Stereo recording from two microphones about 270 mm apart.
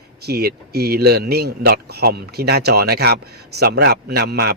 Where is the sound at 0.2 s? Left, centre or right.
Right.